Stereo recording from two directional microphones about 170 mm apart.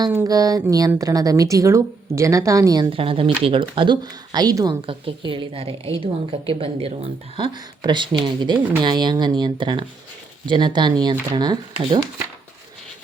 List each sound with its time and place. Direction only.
0.1 s a woman's voice: 15° right (ahead or behind)
2.9 s a woman's voice: 30° right (ahead or behind)